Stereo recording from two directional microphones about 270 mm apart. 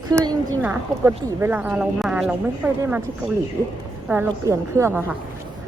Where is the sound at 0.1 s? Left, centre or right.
Centre.